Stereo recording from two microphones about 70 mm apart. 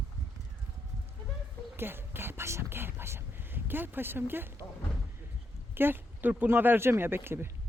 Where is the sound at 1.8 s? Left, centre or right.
Right.